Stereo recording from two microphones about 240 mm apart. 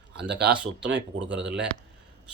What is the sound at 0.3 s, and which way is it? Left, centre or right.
Speech, right.